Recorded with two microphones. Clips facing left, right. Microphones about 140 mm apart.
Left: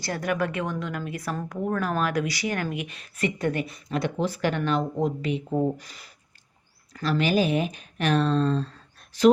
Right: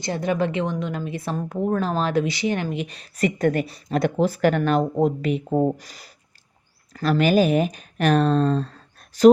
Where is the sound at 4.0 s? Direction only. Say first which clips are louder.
Right 6 dB; 45° right (ahead or behind).